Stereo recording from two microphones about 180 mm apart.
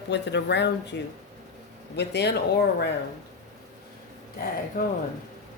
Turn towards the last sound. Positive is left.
turn(degrees=55)  # may be behind; listen again after turning